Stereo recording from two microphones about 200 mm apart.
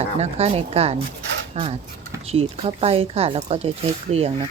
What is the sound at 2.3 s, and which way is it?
Speech, 30° right (ahead or behind).